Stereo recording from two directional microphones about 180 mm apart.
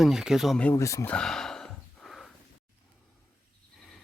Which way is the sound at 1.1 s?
5° left (ahead or behind).